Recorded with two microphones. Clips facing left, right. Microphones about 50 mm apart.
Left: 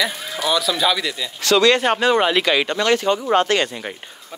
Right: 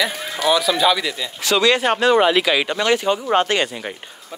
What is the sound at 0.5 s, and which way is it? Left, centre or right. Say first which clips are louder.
Speech: right 3 dB; centre.